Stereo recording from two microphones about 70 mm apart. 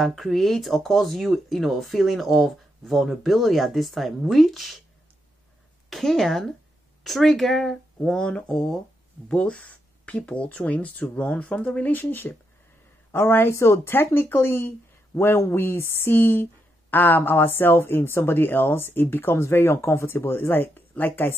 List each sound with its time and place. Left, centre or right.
0.0 s speech: centre
5.9 s speech: centre
8.0 s speech: centre